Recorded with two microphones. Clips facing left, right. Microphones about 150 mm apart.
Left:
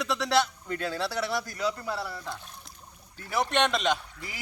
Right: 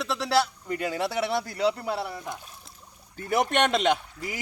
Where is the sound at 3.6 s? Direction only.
50° right (ahead or behind).